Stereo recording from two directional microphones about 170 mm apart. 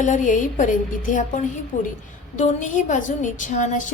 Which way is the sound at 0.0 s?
50° left (ahead or behind).